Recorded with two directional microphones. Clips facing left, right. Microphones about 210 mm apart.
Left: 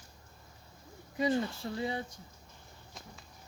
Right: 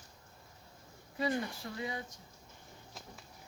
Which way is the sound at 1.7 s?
30° left (ahead or behind).